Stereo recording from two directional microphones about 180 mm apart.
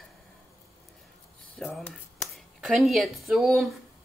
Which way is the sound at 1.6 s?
5° left (ahead or behind).